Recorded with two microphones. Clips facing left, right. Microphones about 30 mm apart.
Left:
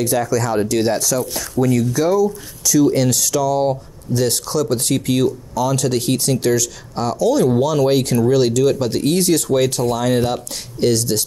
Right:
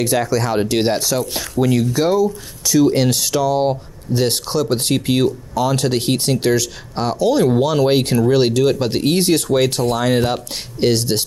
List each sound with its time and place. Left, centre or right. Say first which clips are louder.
0.2 s speech: even; right